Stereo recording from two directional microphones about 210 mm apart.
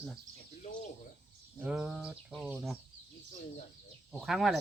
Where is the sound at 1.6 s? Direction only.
5° right (ahead or behind).